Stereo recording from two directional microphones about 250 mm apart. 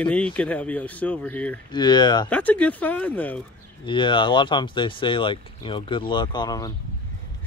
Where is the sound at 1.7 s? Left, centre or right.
Centre.